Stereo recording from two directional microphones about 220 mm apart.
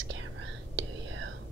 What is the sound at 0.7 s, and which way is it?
Whispering, 60° right (ahead or behind).